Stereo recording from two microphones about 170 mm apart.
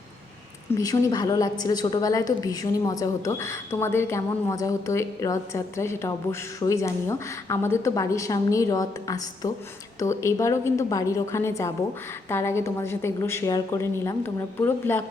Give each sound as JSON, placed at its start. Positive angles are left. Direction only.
{"t": 0.8, "sound": "a woman's voice", "side_deg": 20}